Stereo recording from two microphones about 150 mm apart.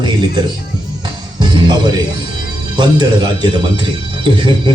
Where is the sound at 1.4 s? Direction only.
30° right (ahead or behind).